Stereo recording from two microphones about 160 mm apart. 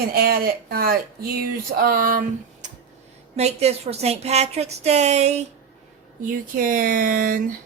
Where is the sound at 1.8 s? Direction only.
60° right (ahead or behind).